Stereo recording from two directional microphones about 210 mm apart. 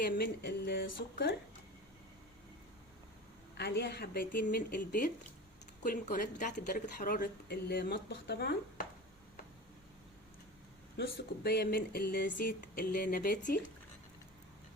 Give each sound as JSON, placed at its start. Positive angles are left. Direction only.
{"t": 0.0, "sound": "speech", "side_deg": 45}
{"t": 3.6, "sound": "speech", "side_deg": 50}
{"t": 10.9, "sound": "speech", "side_deg": 50}